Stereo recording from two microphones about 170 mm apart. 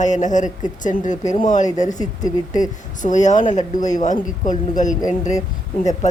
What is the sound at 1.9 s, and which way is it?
Speech, 20° left (ahead or behind).